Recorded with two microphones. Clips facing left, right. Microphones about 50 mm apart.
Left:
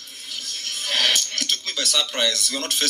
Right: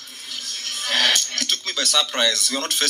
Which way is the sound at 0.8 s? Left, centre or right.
Right.